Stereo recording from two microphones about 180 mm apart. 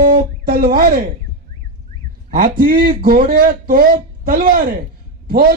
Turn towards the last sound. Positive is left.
turn(degrees=-55)  # may be behind; listen again after turning